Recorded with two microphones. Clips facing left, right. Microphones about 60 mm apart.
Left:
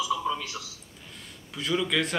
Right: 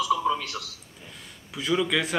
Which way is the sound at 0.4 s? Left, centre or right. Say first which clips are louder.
Right 2 dB; centre.